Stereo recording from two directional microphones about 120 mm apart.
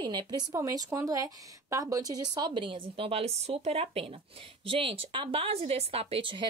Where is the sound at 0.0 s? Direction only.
35° right (ahead or behind).